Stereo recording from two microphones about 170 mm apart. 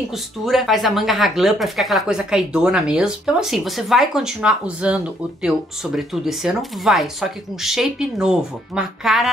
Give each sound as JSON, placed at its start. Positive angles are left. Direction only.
{"t": 0.1, "sound": "speech", "side_deg": 0}